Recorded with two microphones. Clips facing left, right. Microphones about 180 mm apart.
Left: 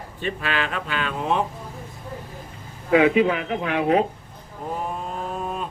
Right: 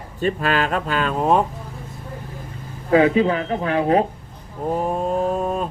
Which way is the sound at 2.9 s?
35° right (ahead or behind).